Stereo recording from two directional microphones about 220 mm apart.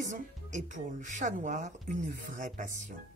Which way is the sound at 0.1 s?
35° right (ahead or behind).